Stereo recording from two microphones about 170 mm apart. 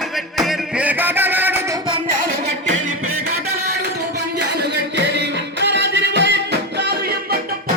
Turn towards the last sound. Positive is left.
turn(degrees=-70)  # may be behind; listen again after turning